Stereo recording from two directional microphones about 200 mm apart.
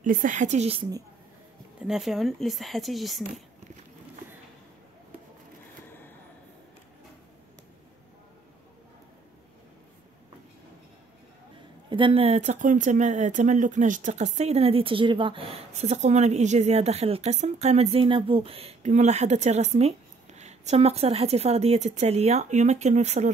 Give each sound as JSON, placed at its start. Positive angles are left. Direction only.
{"t": 0.0, "sound": "speech", "side_deg": -40}
{"t": 1.8, "sound": "speech", "side_deg": 0}
{"t": 5.9, "sound": "a sound", "side_deg": 10}
{"t": 11.9, "sound": "speech", "side_deg": -25}